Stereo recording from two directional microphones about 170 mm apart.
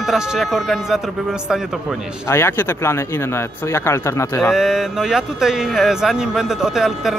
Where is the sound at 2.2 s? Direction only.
15° left (ahead or behind).